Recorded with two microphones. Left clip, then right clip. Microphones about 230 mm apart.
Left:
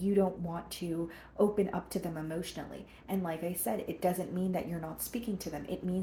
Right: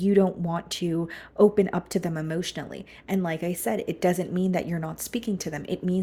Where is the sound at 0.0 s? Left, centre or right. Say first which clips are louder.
Right 8 dB; right.